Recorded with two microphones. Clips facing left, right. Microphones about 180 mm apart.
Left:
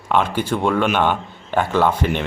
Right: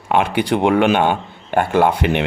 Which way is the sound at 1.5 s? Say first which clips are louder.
Right 3 dB; 50° right (ahead or behind).